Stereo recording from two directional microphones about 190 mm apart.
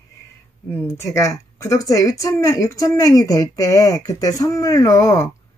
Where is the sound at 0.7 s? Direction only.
15° left (ahead or behind).